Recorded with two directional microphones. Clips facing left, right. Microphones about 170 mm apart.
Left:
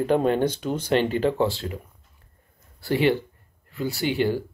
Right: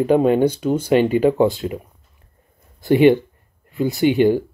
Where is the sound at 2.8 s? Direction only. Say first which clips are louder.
Right 9 dB; 20° right (ahead or behind).